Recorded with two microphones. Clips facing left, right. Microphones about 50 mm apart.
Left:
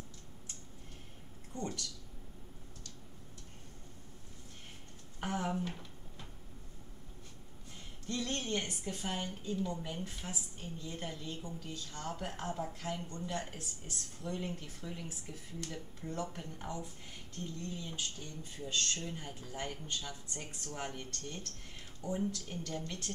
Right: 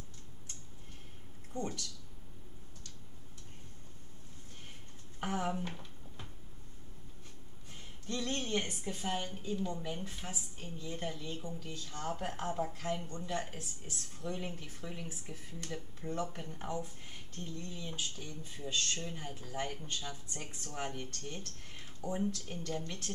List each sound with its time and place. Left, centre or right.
1.5 s speech: right
5.2 s speech: centre
5.7 s a sound: right
8.1 s a woman's voice: centre
9.8 s speech: centre
10.0 s speech: right
10.9 s a woman's voice: centre
15.7 s a woman's voice: centre
18.9 s a woman's voice: centre